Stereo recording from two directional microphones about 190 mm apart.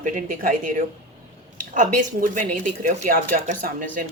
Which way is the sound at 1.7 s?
45° right (ahead or behind).